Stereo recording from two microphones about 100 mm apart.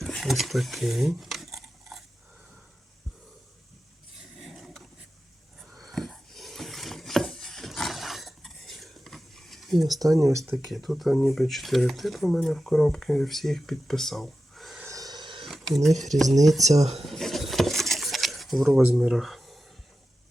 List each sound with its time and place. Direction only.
0.0 s a sound: centre (ahead or behind)
4.2 s a sound: 5° right (ahead or behind)
5.9 s wood: 5° left (ahead or behind)
10.0 s speech: 35° right (ahead or behind)
10.5 s speech: centre (ahead or behind)
14.8 s a sound: 40° right (ahead or behind); by 15.4 s 55° right (ahead or behind)
15.4 s speech: centre (ahead or behind)
16.7 s speech: 90° right
17.1 s keys jangling: centre (ahead or behind)
18.9 s speech: 5° right (ahead or behind)